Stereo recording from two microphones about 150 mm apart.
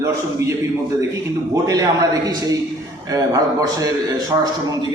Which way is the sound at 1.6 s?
25° right (ahead or behind).